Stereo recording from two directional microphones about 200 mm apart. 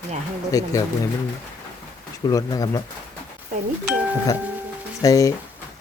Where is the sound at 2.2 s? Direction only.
20° left (ahead or behind).